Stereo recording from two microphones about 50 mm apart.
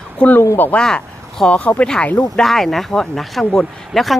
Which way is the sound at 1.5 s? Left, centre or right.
Left.